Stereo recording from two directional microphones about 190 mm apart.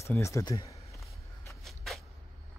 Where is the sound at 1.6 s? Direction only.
Centre (ahead or behind).